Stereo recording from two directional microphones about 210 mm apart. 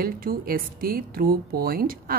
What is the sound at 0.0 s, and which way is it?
Speech, 45° right (ahead or behind).